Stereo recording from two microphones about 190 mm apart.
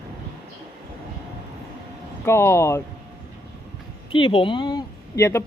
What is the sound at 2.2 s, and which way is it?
Speech, 15° left (ahead or behind).